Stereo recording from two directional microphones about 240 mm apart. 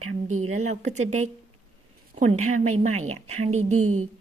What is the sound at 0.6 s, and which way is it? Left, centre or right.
Speech, right.